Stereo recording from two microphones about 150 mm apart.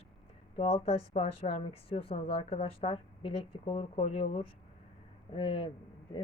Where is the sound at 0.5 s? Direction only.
50° left (ahead or behind).